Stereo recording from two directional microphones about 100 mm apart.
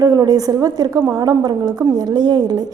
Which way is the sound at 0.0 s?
40° right (ahead or behind).